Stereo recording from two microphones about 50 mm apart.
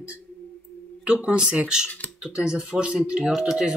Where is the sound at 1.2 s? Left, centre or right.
Right.